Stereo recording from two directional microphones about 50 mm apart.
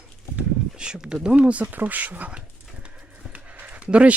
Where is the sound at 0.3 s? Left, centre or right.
Centre.